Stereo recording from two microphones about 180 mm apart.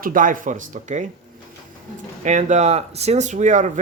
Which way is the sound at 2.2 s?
40° right (ahead or behind).